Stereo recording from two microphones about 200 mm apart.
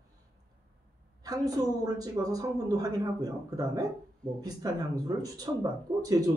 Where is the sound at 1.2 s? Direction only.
20° right (ahead or behind).